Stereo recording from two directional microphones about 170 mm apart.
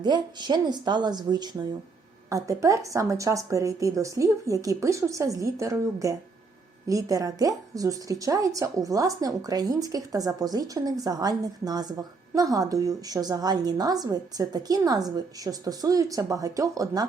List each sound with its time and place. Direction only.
0.0 s a woman's voice: 25° right (ahead or behind)